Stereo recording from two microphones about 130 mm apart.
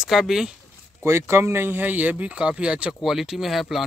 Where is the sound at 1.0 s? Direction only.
20° right (ahead or behind).